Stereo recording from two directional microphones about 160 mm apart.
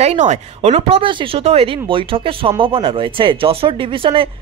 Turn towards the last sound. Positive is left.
turn(degrees=-35)  # may be behind; listen again after turning